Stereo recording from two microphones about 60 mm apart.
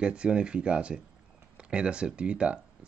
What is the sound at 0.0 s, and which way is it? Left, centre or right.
Speech, centre.